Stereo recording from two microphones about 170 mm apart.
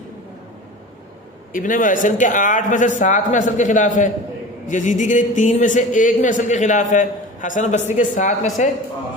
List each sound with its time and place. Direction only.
1.5 s a man's voice: 50° left (ahead or behind)